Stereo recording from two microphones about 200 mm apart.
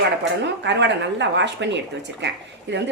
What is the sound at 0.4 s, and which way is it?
A woman's voice, 60° right (ahead or behind).